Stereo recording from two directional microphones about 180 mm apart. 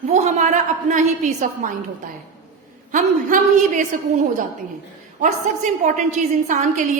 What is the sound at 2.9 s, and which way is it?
Speech, 45° right (ahead or behind).